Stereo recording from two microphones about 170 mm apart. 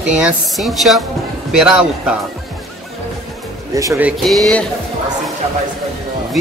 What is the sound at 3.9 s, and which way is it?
Speech, 5° right (ahead or behind).